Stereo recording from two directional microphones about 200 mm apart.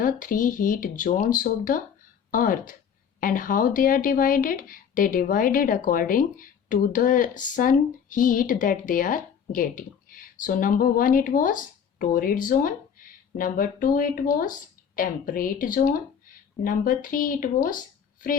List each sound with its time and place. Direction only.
0.0 s speech: 40° left (ahead or behind)